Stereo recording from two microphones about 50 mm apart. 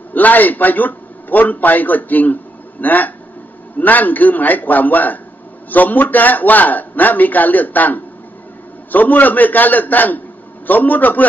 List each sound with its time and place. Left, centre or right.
0.1 s a man's voice: left